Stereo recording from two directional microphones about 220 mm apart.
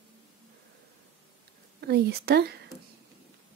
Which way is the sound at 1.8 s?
45° right (ahead or behind).